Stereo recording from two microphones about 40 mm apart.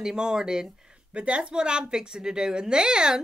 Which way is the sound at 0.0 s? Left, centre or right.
Centre.